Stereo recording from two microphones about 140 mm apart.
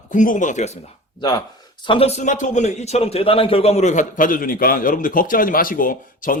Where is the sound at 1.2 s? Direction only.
30° left (ahead or behind).